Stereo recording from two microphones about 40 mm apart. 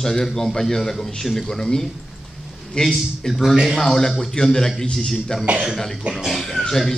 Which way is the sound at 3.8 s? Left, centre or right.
Centre.